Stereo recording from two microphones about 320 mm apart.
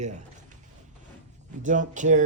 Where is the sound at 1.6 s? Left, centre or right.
Right.